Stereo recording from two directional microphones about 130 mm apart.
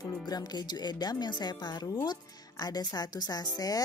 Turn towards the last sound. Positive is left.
turn(degrees=30)  # may be behind; listen again after turning